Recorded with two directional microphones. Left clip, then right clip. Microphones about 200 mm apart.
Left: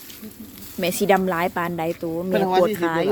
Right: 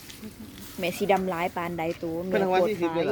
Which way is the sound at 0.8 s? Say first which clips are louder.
Left 5 dB; 30° left (ahead or behind).